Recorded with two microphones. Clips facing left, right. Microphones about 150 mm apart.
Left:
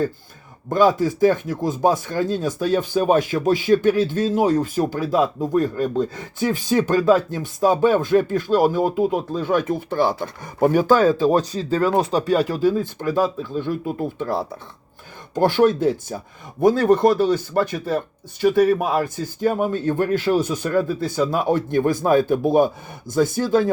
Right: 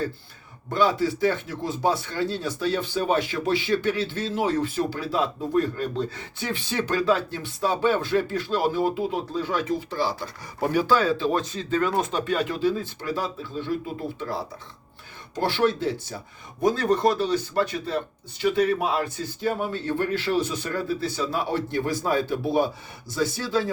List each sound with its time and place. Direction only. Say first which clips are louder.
0.7 s speech: left 5 dB; 45° left (ahead or behind)